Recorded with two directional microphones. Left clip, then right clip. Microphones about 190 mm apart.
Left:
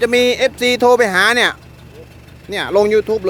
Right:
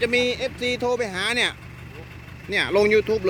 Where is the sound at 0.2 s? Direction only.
50° left (ahead or behind).